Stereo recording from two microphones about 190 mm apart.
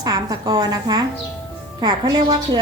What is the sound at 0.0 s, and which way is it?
A woman's voice, 20° right (ahead or behind).